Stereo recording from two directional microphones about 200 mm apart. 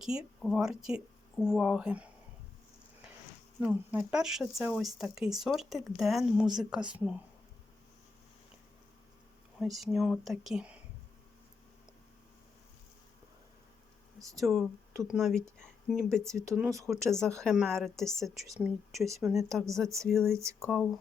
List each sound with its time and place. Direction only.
0.0 s speech: 5° right (ahead or behind)
3.6 s speech: 5° right (ahead or behind)
9.6 s speech: centre (ahead or behind)
14.2 s speech: 15° right (ahead or behind)
14.4 s speech: centre (ahead or behind)
16.3 s speech: 15° right (ahead or behind)
17.1 s speech: 5° left (ahead or behind)
20.3 s speech: 15° right (ahead or behind)